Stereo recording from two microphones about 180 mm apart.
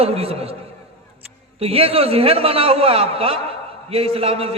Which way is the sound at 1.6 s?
35° right (ahead or behind).